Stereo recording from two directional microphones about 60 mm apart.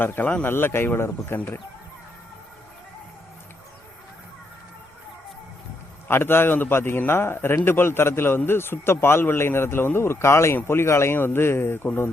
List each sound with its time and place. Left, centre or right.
0.0 s speech: left
6.1 s speech: left